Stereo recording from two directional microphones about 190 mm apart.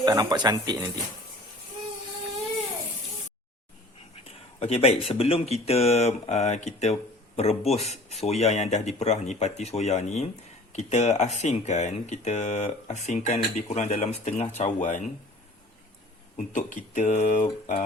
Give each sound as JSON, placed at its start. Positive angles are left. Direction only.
{"t": 0.0, "sound": "speech", "side_deg": -20}
{"t": 4.6, "sound": "speech", "side_deg": 35}
{"t": 16.6, "sound": "speech", "side_deg": 40}